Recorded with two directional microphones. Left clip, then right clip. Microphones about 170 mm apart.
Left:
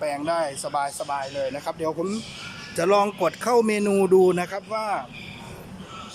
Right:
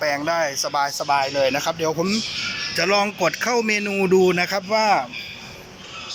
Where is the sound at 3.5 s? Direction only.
20° left (ahead or behind).